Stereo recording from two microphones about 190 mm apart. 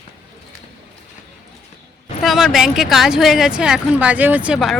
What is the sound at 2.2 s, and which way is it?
Speech, centre (ahead or behind).